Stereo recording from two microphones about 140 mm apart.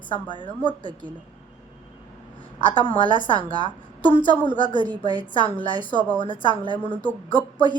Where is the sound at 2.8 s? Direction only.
35° left (ahead or behind).